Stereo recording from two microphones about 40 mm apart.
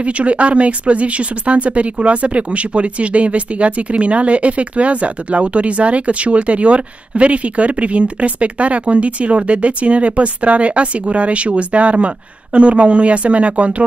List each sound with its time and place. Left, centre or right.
0.0 s a woman's voice: right